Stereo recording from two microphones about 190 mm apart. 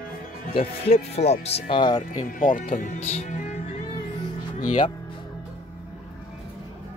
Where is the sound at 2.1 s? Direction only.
40° left (ahead or behind).